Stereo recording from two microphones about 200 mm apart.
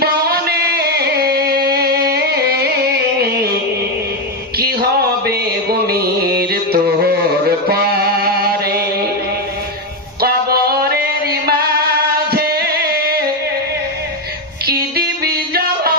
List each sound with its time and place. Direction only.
0.0 s music: 50° right (ahead or behind)
4.5 s music: 50° right (ahead or behind)
10.2 s music: 50° right (ahead or behind)
14.7 s music: 50° right (ahead or behind)